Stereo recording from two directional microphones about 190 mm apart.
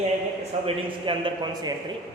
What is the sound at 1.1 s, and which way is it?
Speech, 25° right (ahead or behind).